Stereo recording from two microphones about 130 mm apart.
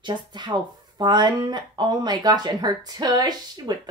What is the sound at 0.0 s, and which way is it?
Speech, 35° right (ahead or behind).